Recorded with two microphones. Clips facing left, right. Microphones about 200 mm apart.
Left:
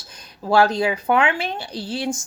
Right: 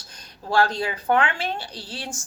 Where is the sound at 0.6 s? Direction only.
10° left (ahead or behind).